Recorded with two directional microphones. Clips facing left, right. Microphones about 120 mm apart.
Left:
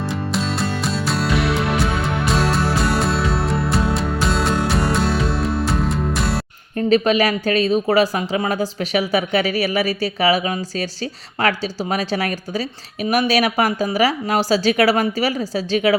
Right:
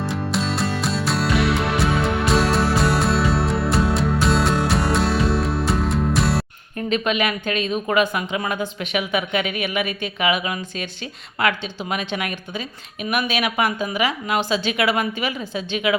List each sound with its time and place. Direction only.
0.0 s music: centre (ahead or behind)
6.7 s speech: 35° left (ahead or behind)